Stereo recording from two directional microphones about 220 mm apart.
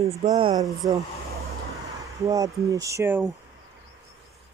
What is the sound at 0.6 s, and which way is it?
Speech, 15° right (ahead or behind).